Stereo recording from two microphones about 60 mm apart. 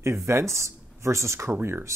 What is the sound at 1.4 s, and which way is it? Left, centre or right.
Speech, right.